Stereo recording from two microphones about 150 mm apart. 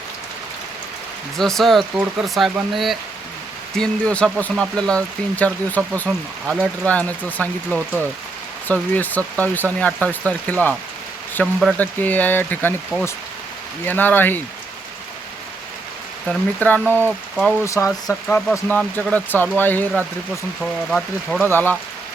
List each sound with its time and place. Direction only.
1.4 s speech: centre (ahead or behind)
16.2 s speech: 10° left (ahead or behind)
17.0 s speech: 10° right (ahead or behind)
17.7 s speech: 20° left (ahead or behind)